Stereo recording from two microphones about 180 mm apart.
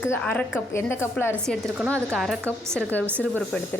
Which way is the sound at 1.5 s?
5° left (ahead or behind).